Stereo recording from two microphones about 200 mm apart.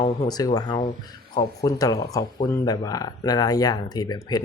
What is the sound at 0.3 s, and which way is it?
Speech, 20° left (ahead or behind).